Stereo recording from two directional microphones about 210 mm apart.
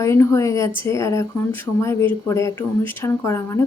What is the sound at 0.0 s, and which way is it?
Speech, 15° left (ahead or behind).